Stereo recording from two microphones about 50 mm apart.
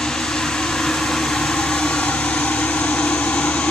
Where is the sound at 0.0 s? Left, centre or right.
Centre.